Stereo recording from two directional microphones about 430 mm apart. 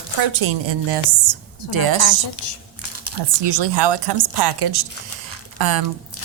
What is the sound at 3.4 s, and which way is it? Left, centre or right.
A woman's voice, right.